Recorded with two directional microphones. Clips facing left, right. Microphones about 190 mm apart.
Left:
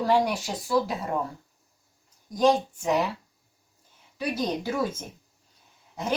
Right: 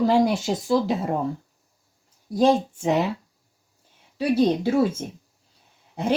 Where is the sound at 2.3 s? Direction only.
30° right (ahead or behind).